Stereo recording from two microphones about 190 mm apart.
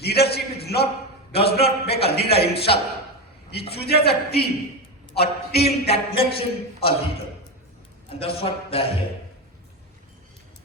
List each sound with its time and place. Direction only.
0.0 s a man's voice: 55° left (ahead or behind)
1.3 s a man's voice: 30° left (ahead or behind)
1.9 s a sound: 60° left (ahead or behind)
2.5 s a man's voice: 30° left (ahead or behind)
3.7 s a man's voice: 55° left (ahead or behind)
5.9 s a man's voice: 30° left (ahead or behind)
8.1 s a man's voice: 30° left (ahead or behind)